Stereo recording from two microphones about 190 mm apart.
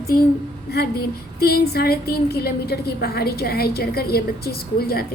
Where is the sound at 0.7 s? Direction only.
55° left (ahead or behind).